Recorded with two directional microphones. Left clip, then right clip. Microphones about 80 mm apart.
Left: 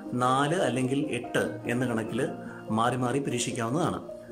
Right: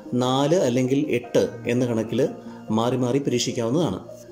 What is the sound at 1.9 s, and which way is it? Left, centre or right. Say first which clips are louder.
Speech: right 7 dB; right.